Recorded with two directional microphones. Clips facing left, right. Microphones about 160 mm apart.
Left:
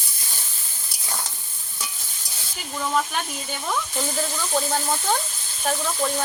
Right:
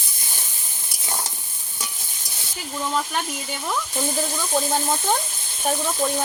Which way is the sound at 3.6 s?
10° right (ahead or behind).